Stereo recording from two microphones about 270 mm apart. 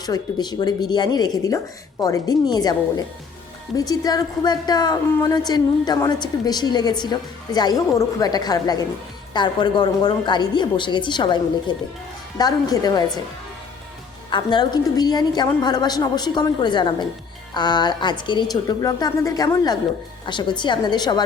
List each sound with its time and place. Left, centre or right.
0.0 s a woman's voice: centre
3.8 s a woman's voice: centre
14.3 s a woman's voice: centre